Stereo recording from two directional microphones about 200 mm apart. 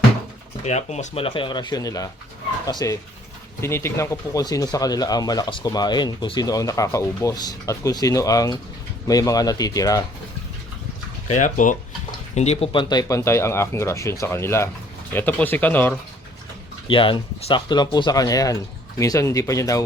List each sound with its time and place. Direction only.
0.6 s speech: 35° left (ahead or behind); by 10.0 s 15° left (ahead or behind)
11.3 s speech: 40° left (ahead or behind); by 16.0 s 10° left (ahead or behind)
16.9 s speech: 25° left (ahead or behind)